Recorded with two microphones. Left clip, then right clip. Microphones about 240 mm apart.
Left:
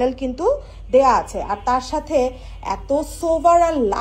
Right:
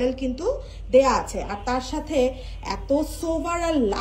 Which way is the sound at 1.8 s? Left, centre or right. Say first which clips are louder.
Left 4 dB; centre.